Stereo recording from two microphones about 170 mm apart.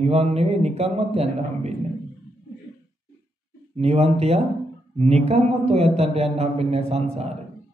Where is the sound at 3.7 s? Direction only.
40° right (ahead or behind).